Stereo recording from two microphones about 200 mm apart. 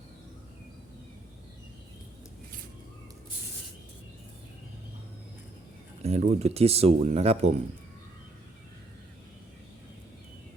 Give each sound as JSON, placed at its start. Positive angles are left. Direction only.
{"t": 6.0, "sound": "speech", "side_deg": -30}